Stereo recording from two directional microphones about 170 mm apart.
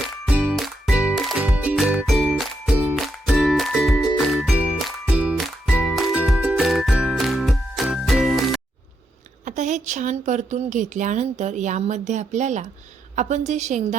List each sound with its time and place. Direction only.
0.3 s music: 5° right (ahead or behind)
9.4 s a woman's voice: 45° right (ahead or behind)